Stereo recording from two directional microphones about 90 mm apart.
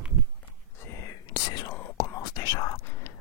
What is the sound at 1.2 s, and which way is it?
Whispering, 45° left (ahead or behind).